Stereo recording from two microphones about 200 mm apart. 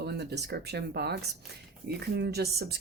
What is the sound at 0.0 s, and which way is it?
Speech, 55° right (ahead or behind).